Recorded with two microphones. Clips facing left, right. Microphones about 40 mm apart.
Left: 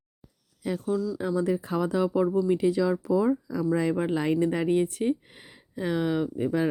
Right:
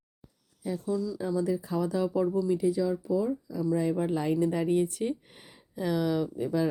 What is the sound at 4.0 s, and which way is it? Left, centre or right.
Speech, left.